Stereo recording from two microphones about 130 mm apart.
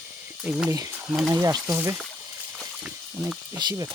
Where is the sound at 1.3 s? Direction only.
25° right (ahead or behind).